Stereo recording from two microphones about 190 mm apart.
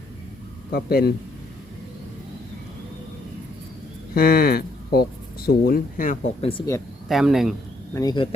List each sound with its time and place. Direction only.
0.7 s a man's voice: 55° left (ahead or behind)
4.1 s speech: 55° left (ahead or behind); by 6.7 s 30° left (ahead or behind)
7.1 s speech: centre (ahead or behind)
7.9 s speech: 20° left (ahead or behind)